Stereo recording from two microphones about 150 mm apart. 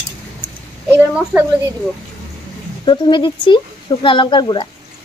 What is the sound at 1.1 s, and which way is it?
Speech, 10° right (ahead or behind).